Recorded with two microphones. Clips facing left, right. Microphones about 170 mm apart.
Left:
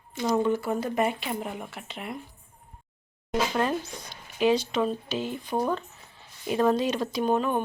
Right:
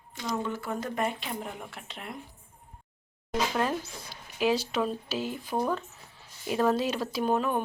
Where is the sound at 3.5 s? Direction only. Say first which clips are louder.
Left 2 dB; centre (ahead or behind).